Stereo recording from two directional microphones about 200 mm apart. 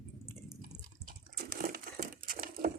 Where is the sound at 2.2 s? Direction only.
45° right (ahead or behind).